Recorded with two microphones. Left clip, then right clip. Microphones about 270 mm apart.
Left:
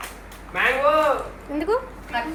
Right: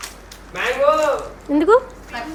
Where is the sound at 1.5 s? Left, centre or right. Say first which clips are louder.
Right 9 dB; right.